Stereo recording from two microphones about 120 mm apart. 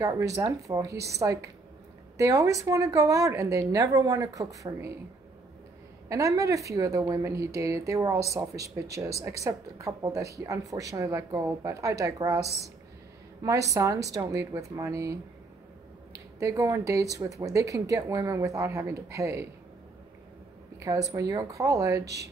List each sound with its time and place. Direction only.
0.0 s speech: 25° right (ahead or behind)
6.0 s speech: 25° right (ahead or behind)
16.3 s speech: 25° right (ahead or behind)
20.8 s speech: 30° right (ahead or behind)